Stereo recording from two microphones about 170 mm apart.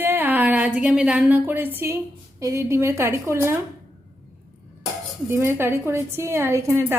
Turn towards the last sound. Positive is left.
turn(degrees=-15)  # may be behind; listen again after turning